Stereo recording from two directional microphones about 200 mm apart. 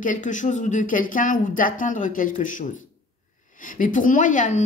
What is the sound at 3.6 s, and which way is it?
Speech, 40° left (ahead or behind).